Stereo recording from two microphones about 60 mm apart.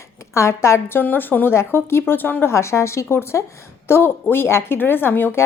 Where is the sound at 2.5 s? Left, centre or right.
Left.